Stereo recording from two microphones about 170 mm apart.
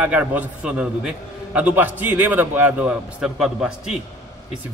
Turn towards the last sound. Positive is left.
turn(degrees=-5)  # may be behind; listen again after turning